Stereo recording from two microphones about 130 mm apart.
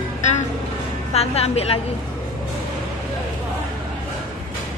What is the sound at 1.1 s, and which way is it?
Speech, 50° left (ahead or behind).